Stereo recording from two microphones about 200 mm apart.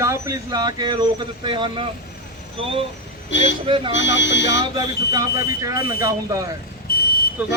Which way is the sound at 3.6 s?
25° right (ahead or behind).